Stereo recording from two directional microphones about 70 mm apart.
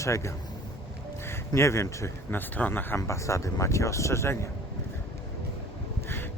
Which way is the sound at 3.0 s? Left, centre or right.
Left.